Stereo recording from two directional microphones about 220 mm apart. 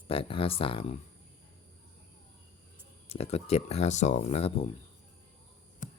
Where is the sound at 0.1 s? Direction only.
25° left (ahead or behind).